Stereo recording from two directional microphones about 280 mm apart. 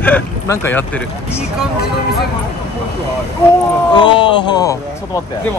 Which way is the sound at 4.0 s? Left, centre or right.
Centre.